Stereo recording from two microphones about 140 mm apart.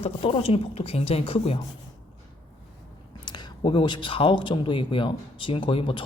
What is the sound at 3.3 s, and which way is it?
Speech, 35° left (ahead or behind).